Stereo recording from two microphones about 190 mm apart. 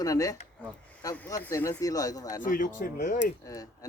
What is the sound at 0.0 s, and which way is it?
Speech, 20° left (ahead or behind).